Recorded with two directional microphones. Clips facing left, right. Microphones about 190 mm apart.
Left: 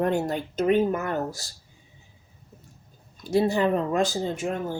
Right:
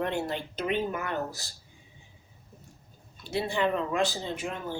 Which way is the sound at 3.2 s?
45° left (ahead or behind).